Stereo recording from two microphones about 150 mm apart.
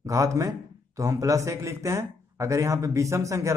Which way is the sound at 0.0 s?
20° right (ahead or behind).